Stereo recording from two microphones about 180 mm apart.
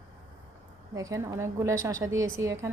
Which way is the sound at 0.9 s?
20° right (ahead or behind).